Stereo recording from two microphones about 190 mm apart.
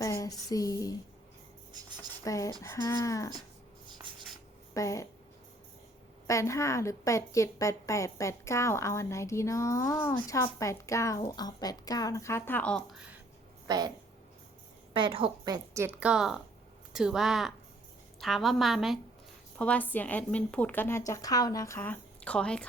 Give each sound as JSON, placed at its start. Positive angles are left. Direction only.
{"t": 0.0, "sound": "a sound", "side_deg": 15}
{"t": 2.2, "sound": "a woman's voice", "side_deg": 15}
{"t": 4.1, "sound": "writing", "side_deg": -25}
{"t": 4.7, "sound": "a sound", "side_deg": 15}
{"t": 6.2, "sound": "a woman's voice", "side_deg": 15}
{"t": 13.7, "sound": "a woman's voice", "side_deg": -20}
{"t": 14.9, "sound": "a woman's voice", "side_deg": -25}